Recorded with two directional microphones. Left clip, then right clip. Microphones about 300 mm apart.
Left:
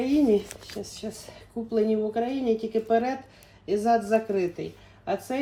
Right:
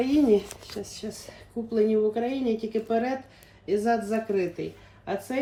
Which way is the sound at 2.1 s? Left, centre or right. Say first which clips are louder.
Left 2 dB; centre.